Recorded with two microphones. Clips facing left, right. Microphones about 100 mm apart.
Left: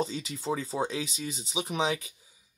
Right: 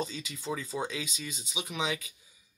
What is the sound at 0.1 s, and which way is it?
Speech, 30° left (ahead or behind).